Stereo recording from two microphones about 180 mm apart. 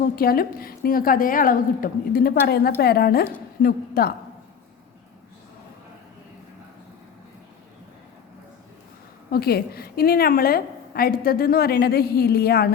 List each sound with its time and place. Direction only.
0.0 s a woman's voice: 55° left (ahead or behind)
9.3 s a woman's voice: 60° left (ahead or behind)